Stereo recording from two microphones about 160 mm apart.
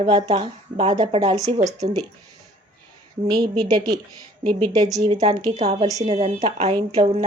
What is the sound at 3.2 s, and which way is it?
Speech, 25° right (ahead or behind).